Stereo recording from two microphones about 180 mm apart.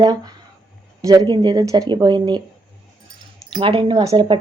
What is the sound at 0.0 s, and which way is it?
Speech, 20° right (ahead or behind).